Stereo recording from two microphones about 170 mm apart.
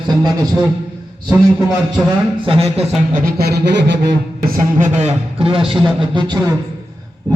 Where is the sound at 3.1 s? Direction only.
65° right (ahead or behind); by 4.1 s 85° right.